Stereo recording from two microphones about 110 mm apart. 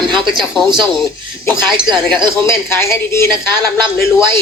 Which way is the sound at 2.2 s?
25° left (ahead or behind).